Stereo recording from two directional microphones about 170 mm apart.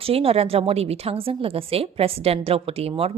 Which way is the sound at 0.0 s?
35° right (ahead or behind).